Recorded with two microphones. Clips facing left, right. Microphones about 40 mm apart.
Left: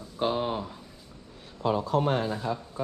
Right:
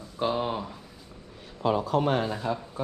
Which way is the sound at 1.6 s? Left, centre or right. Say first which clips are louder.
Right 1 dB; right.